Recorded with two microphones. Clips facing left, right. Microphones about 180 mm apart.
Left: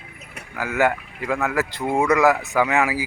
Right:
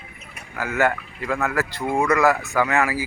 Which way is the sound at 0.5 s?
15° left (ahead or behind).